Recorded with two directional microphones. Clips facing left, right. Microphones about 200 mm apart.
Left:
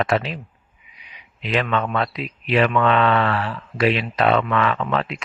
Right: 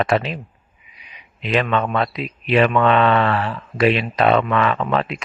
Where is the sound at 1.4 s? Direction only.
20° right (ahead or behind).